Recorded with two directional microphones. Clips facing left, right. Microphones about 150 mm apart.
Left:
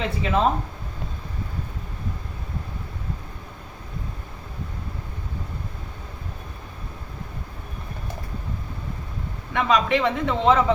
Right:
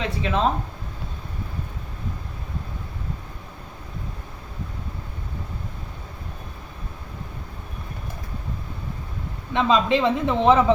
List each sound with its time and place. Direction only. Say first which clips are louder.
0.0 s speech: left 1 dB; 5° left (ahead or behind)
9.5 s speech: right 1 dB; 25° right (ahead or behind)